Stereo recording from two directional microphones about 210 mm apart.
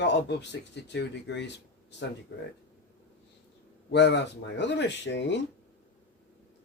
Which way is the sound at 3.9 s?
55° left (ahead or behind).